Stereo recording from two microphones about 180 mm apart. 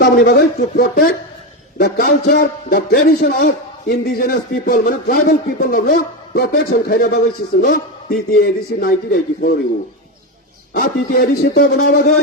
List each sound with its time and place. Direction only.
0.0 s a man's voice: 65° left (ahead or behind)
10.8 s speech: 55° left (ahead or behind)